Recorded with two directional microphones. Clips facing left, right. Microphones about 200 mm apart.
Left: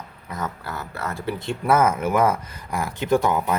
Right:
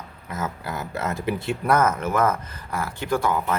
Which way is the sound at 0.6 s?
15° right (ahead or behind).